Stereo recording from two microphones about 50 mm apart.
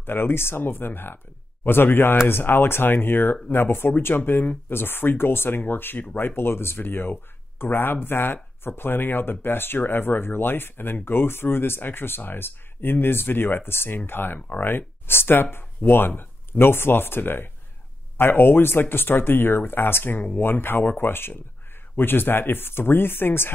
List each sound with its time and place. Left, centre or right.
0.0 s speech: left
6.2 s speech: left